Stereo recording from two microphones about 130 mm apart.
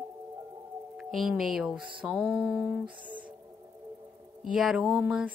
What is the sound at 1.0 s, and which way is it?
Speech, centre (ahead or behind).